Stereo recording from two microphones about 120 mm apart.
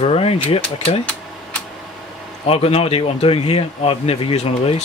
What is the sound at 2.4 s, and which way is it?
Speech, 55° left (ahead or behind).